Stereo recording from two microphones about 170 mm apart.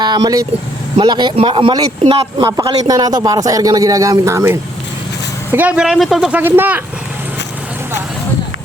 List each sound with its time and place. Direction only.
0.0 s a woman's voice: 25° right (ahead or behind)